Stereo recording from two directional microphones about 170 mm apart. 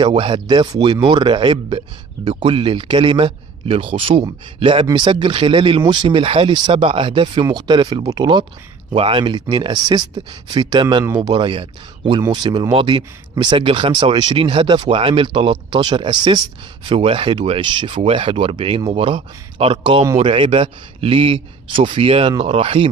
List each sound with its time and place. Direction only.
0.0 s speech: 30° right (ahead or behind)